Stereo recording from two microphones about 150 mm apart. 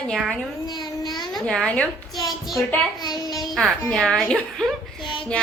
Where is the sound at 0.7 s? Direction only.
25° left (ahead or behind).